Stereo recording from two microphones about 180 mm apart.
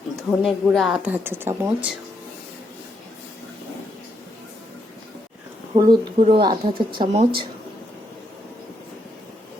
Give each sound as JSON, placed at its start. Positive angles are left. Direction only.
{"t": 0.3, "sound": "speech", "side_deg": 0}
{"t": 5.7, "sound": "speech", "side_deg": -30}